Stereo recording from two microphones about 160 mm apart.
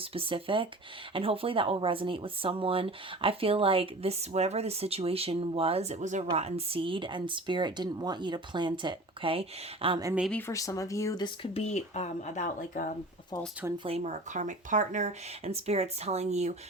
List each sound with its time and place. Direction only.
0.0 s speech: 35° right (ahead or behind)
10.3 s speech: 15° left (ahead or behind)
11.5 s speech: 40° left (ahead or behind)
13.7 s speech: 35° right (ahead or behind)